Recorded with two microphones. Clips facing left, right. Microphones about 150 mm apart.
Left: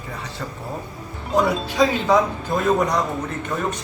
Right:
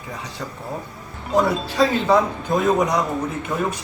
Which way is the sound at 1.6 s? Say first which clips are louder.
Even; 15° left (ahead or behind).